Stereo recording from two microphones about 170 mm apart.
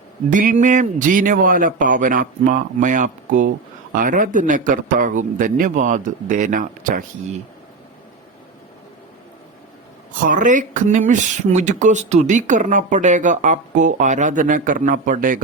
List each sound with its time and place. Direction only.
0.3 s speech: 50° right (ahead or behind)
10.2 s speech: 50° right (ahead or behind)